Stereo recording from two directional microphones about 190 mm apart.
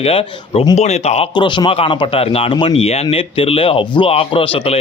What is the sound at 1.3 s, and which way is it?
Speech, 25° left (ahead or behind).